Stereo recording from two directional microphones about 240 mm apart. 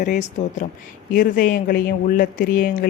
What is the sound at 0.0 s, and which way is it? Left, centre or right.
Speech, left.